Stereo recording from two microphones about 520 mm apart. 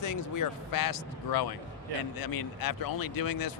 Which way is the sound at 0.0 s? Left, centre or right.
Left.